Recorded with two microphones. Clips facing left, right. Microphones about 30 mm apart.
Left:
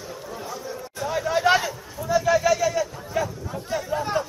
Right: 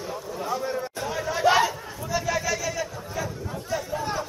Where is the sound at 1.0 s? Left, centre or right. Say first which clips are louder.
Left 2 dB; left.